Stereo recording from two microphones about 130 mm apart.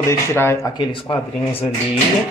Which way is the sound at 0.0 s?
20° left (ahead or behind).